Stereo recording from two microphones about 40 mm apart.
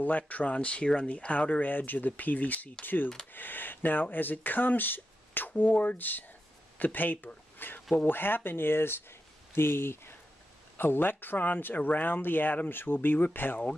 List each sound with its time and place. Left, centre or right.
0.3 s speech: left
5.6 s speech: left
7.5 s a sound: left
8.1 s speech: left
9.5 s speech: left
10.8 s speech: left